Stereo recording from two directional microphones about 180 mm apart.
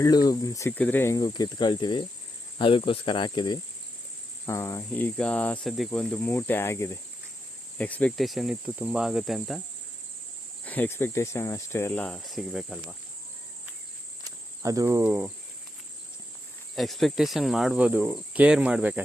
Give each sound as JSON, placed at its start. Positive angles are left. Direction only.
{"t": 0.0, "sound": "speech", "side_deg": 20}
{"t": 7.8, "sound": "cricket", "side_deg": 10}
{"t": 10.7, "sound": "speech", "side_deg": 10}
{"t": 14.3, "sound": "cricket", "side_deg": -20}
{"t": 16.7, "sound": "cricket", "side_deg": 0}